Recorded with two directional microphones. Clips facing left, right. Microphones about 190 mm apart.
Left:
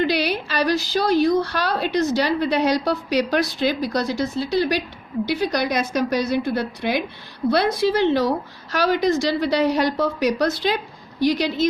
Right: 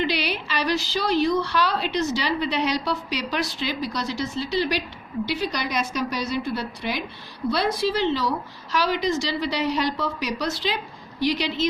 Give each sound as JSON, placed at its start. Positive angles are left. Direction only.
{"t": 0.0, "sound": "a woman's voice", "side_deg": 45}